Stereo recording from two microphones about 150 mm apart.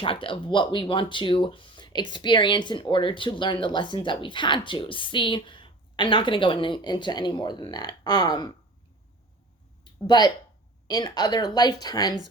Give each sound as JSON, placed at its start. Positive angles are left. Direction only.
{"t": 0.0, "sound": "speech", "side_deg": 35}
{"t": 9.8, "sound": "a sound", "side_deg": 30}
{"t": 10.8, "sound": "speech", "side_deg": 25}